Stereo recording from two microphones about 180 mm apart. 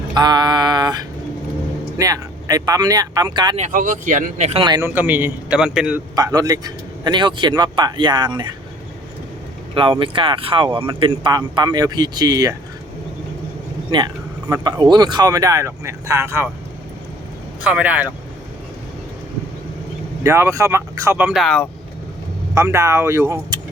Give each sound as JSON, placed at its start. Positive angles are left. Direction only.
{"t": 0.1, "sound": "a sound", "side_deg": -20}
{"t": 2.0, "sound": "speech", "side_deg": -20}
{"t": 3.6, "sound": "speech", "side_deg": -45}
{"t": 4.6, "sound": "speech", "side_deg": -20}
{"t": 4.9, "sound": "speech", "side_deg": -10}
{"t": 6.1, "sound": "speech", "side_deg": -20}
{"t": 9.7, "sound": "speech", "side_deg": -30}
{"t": 13.9, "sound": "speech", "side_deg": -25}
{"t": 17.6, "sound": "speech", "side_deg": -5}
{"t": 20.2, "sound": "speech", "side_deg": -15}
{"t": 22.5, "sound": "speech", "side_deg": -15}